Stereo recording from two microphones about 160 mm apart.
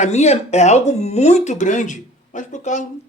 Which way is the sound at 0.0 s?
45° left (ahead or behind).